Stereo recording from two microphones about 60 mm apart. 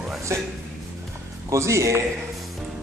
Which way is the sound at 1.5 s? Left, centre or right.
Right.